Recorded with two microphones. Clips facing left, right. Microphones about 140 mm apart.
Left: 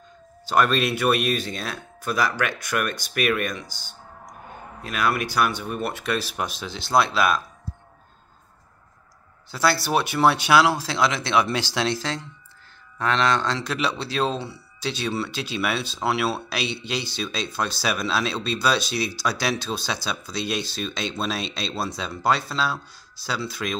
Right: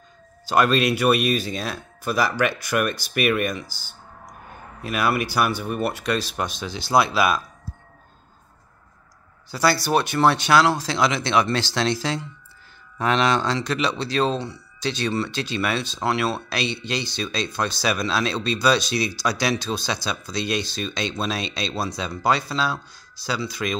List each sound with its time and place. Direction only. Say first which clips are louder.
0.5 s speech: right 2 dB; centre (ahead or behind)
9.5 s speech: right 2 dB; centre (ahead or behind)
12.9 s speech: right 2 dB; 15° right (ahead or behind)
13.5 s speech: right 2 dB; centre (ahead or behind)